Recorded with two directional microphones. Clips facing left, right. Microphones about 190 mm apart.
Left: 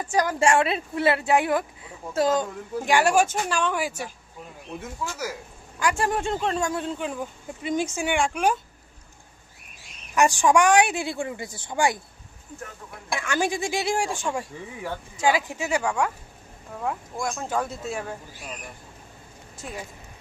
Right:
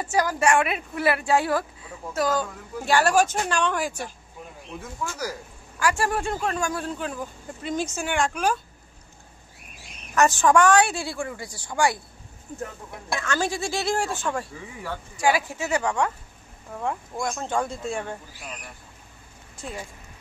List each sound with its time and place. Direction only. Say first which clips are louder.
0.2 s a woman's voice: left 1 dB; 25° left (ahead or behind); by 4.1 s 10° left (ahead or behind)
5.8 s speech: even; 20° left (ahead or behind)
10.1 s a woman's voice: even; 15° left (ahead or behind)
13.1 s speech: left 1 dB; 15° left (ahead or behind)